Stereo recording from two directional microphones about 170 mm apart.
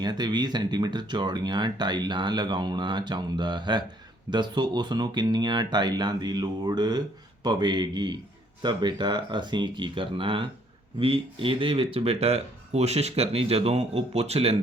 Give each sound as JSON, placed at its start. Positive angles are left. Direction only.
{"t": 0.0, "sound": "speech", "side_deg": -25}